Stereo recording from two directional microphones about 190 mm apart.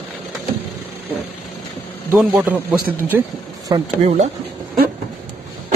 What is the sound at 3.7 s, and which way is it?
Speech, 20° right (ahead or behind).